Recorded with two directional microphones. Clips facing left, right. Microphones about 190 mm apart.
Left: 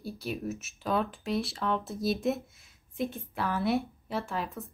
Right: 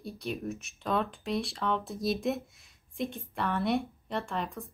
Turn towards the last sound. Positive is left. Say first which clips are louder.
# even
turn(degrees=5)  # may be behind; listen again after turning